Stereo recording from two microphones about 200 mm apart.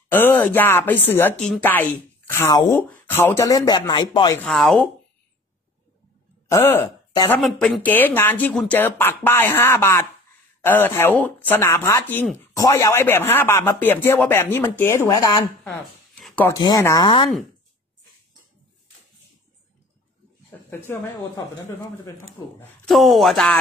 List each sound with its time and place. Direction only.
0.1 s speech: 10° left (ahead or behind)
4.4 s speech: centre (ahead or behind)
6.5 s speech: 15° left (ahead or behind)
16.2 s a sound: centre (ahead or behind)
16.4 s speech: 20° left (ahead or behind)
20.4 s speech: 15° left (ahead or behind)
22.6 s speech: centre (ahead or behind)